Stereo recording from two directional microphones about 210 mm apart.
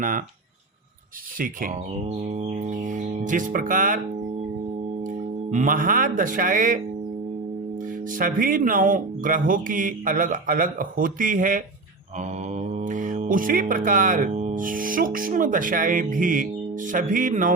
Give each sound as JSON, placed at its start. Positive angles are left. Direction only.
{"t": 1.4, "sound": "speech", "side_deg": -35}
{"t": 5.0, "sound": "speech", "side_deg": -35}
{"t": 8.1, "sound": "speech", "side_deg": -40}
{"t": 12.5, "sound": "mantra", "side_deg": -35}